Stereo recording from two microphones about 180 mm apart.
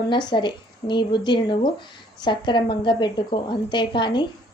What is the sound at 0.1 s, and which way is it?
A woman's voice, 25° left (ahead or behind).